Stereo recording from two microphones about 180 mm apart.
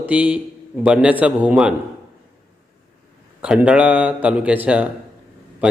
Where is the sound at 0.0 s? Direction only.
10° right (ahead or behind).